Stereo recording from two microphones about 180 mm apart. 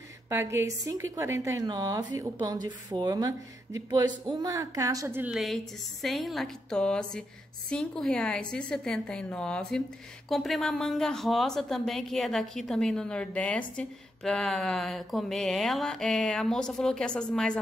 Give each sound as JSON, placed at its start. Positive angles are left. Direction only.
{"t": 0.3, "sound": "a woman's voice", "side_deg": -15}